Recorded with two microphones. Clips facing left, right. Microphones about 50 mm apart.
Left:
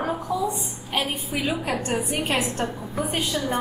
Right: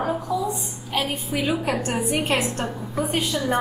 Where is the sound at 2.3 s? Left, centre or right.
Centre.